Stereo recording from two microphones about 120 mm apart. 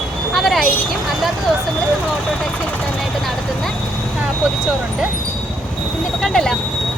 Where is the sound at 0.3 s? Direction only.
Centre (ahead or behind).